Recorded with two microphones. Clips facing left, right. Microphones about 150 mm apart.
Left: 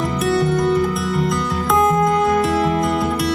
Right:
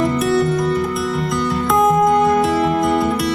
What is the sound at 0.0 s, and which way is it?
Music, centre (ahead or behind).